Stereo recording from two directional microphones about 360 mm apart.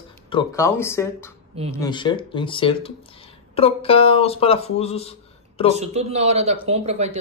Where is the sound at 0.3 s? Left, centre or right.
Centre.